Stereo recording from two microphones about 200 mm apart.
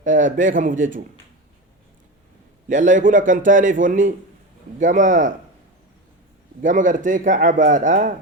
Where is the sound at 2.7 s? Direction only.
40° right (ahead or behind).